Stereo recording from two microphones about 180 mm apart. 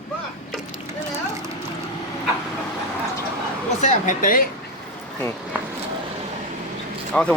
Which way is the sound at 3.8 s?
45° left (ahead or behind).